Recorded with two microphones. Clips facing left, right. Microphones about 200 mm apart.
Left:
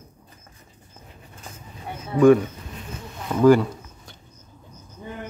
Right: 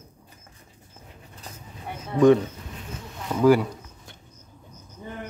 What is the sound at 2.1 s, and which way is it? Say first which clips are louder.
Speech: left 2 dB; 5° left (ahead or behind).